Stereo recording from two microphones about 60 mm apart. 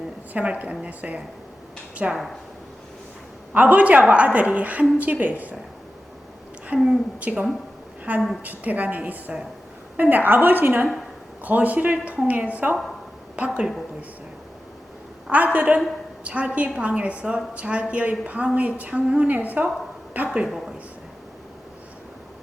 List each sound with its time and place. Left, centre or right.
0.3 s a woman's voice: right
3.5 s a woman's voice: right
6.7 s speech: centre
7.2 s a woman's voice: right
15.3 s a woman's voice: right
20.4 s speech: centre